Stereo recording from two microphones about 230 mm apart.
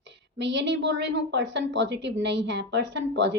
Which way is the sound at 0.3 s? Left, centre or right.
Right.